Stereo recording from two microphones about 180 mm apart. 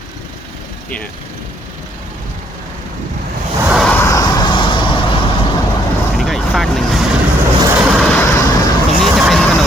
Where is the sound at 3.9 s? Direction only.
15° left (ahead or behind).